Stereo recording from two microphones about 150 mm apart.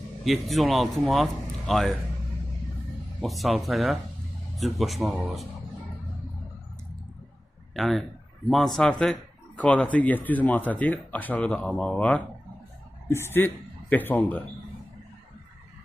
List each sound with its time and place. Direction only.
0.3 s speech: centre (ahead or behind)
3.2 s speech: centre (ahead or behind)
7.8 s speech: centre (ahead or behind)
13.1 s speech: 15° left (ahead or behind)